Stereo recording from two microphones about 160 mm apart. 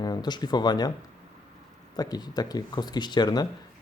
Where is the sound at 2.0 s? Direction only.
25° left (ahead or behind).